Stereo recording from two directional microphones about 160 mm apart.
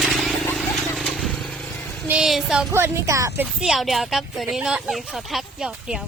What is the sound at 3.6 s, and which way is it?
Speech, centre (ahead or behind).